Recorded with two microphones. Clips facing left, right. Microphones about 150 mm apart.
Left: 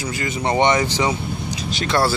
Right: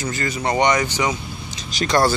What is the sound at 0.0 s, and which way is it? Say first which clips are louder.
Speech: right 1 dB; 10° left (ahead or behind).